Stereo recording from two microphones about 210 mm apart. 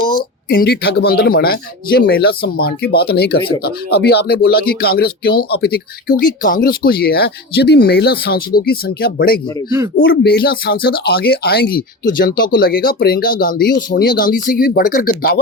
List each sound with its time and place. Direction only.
0.0 s speech: 45° left (ahead or behind)
9.6 s speech: 15° right (ahead or behind)
10.1 s speech: 50° left (ahead or behind)